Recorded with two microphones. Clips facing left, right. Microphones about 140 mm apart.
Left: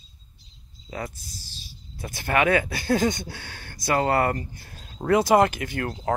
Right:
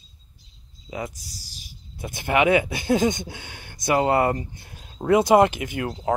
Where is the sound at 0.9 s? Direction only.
15° right (ahead or behind).